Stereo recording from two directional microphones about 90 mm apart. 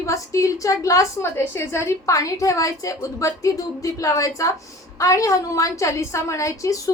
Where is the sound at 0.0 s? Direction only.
35° left (ahead or behind).